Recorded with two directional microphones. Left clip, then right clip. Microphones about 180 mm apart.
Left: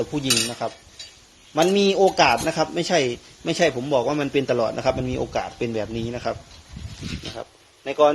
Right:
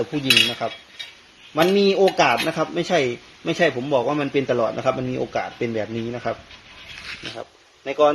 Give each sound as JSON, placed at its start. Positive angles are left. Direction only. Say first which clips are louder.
{"t": 0.3, "sound": "cutlery", "louder": "right 7 dB", "side_deg": 0}
{"t": 1.5, "sound": "speech", "louder": "right 1 dB", "side_deg": 15}